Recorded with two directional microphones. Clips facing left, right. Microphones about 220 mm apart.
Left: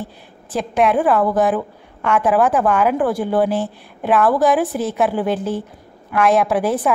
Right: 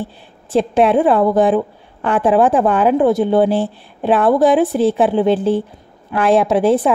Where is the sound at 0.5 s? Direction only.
30° right (ahead or behind).